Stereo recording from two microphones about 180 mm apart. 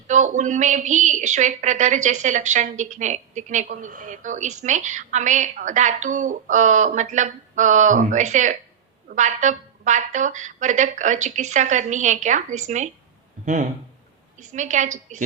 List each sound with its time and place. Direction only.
0.1 s a woman's voice: 40° right (ahead or behind)